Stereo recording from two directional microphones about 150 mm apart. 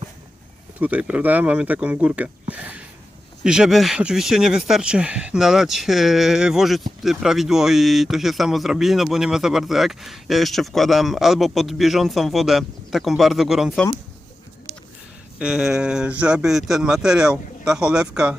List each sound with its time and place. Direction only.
0.8 s speech: 10° right (ahead or behind)
15.4 s speech: 5° right (ahead or behind)